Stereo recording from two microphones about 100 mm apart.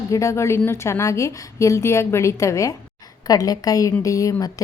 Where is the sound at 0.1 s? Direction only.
30° left (ahead or behind).